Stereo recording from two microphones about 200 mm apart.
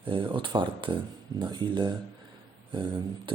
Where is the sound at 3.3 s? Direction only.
25° right (ahead or behind).